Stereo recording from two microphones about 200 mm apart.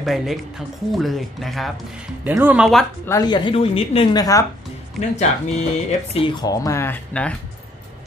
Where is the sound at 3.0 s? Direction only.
20° left (ahead or behind).